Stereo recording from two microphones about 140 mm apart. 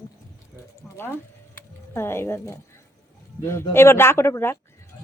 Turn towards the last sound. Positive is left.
turn(degrees=20)  # may be behind; listen again after turning